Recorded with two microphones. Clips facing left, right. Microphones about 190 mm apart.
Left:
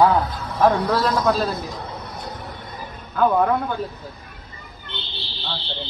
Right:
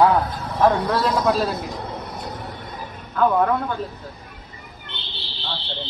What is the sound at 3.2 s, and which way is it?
Speech, 5° left (ahead or behind).